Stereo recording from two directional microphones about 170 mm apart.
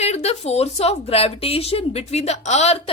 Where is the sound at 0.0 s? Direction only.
40° left (ahead or behind).